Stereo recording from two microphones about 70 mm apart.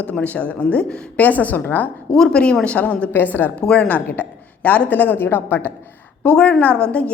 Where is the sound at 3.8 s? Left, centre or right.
Left.